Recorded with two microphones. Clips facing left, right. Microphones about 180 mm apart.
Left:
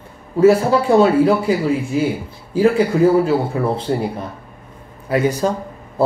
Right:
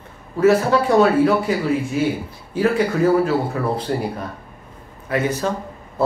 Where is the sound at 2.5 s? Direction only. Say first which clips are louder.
Left 4 dB; 30° left (ahead or behind).